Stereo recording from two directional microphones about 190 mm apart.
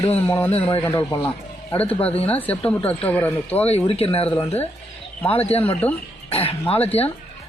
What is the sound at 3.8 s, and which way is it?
Speech, 30° left (ahead or behind).